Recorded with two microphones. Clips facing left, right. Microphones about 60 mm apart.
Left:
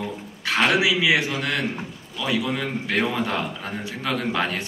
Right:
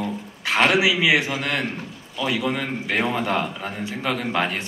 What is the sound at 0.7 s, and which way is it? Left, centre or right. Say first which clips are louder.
A man's voice: right 1 dB; right.